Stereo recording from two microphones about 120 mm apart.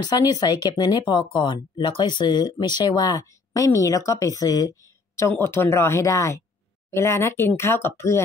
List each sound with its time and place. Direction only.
0.0 s speech: 35° left (ahead or behind)
1.0 s speech: 45° left (ahead or behind); by 8.2 s 20° left (ahead or behind)